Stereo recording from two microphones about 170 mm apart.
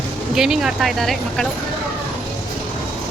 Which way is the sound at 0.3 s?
5° right (ahead or behind).